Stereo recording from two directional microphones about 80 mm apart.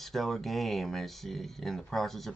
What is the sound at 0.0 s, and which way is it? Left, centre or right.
Speech, centre.